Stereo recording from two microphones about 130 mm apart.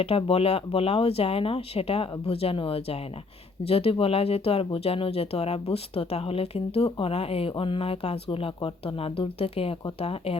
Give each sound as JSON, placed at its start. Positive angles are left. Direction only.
{"t": 0.0, "sound": "speech", "side_deg": 45}